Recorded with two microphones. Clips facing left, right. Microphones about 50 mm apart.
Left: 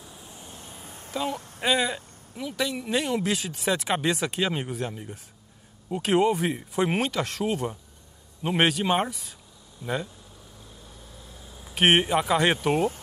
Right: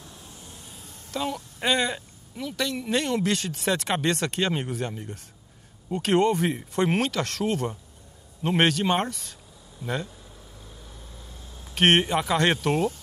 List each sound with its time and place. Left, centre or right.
0.0 s vehicle: centre; by 1.1 s left
1.6 s speech: centre
11.3 s speech: centre